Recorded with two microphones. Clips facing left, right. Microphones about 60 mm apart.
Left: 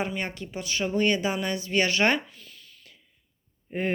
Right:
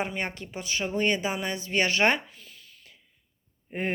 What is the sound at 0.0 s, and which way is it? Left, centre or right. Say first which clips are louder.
A woman's voice: left 1 dB; right.